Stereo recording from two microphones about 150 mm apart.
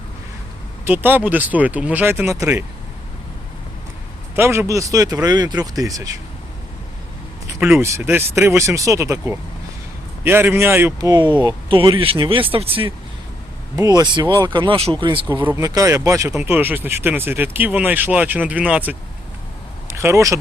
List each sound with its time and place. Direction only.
0.9 s speech: 10° right (ahead or behind)
4.4 s speech: 15° right (ahead or behind)
7.6 s speech: 15° right (ahead or behind)
11.1 s speech: 30° right (ahead or behind)
13.7 s speech: 25° right (ahead or behind)
15.4 s speech: 20° right (ahead or behind)